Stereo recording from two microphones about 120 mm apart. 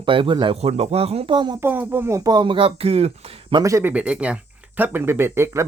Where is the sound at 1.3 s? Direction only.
40° right (ahead or behind).